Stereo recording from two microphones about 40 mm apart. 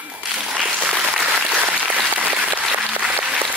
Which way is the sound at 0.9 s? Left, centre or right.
Centre.